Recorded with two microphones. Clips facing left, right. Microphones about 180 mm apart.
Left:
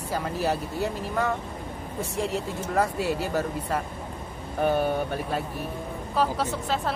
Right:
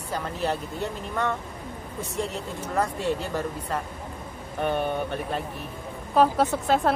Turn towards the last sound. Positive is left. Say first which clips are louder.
# right 5 dB
turn(degrees=-55)  # may be behind; listen again after turning